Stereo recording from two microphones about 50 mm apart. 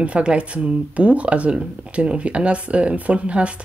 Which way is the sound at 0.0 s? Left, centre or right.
Right.